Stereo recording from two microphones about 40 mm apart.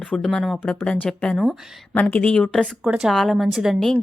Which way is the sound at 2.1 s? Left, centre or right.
Left.